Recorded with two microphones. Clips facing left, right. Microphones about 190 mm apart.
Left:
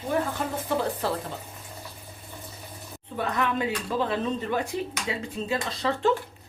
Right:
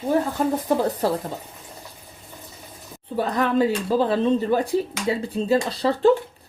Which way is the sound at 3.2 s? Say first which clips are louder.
Right 7 dB; 35° right (ahead or behind).